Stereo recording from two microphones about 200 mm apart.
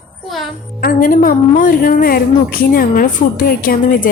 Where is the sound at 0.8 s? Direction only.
45° left (ahead or behind).